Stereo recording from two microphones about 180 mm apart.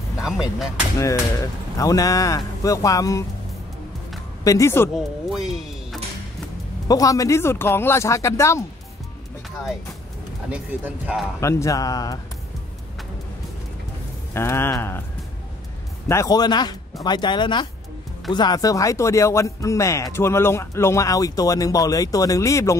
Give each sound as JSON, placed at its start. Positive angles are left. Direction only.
{"t": 0.2, "sound": "speech", "side_deg": 0}
{"t": 0.9, "sound": "speech", "side_deg": 15}
{"t": 4.5, "sound": "speech", "side_deg": 15}
{"t": 4.9, "sound": "speech", "side_deg": 0}
{"t": 6.9, "sound": "speech", "side_deg": 20}
{"t": 11.3, "sound": "speech", "side_deg": 15}
{"t": 14.3, "sound": "speech", "side_deg": 15}
{"t": 16.1, "sound": "speech", "side_deg": 20}